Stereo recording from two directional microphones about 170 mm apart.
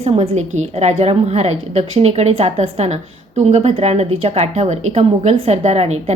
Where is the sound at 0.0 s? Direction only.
40° right (ahead or behind).